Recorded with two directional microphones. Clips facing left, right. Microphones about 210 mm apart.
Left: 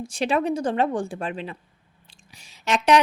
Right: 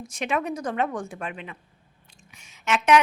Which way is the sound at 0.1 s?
30° left (ahead or behind).